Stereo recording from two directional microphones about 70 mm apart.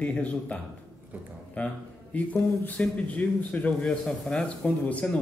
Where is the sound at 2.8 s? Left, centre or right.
Centre.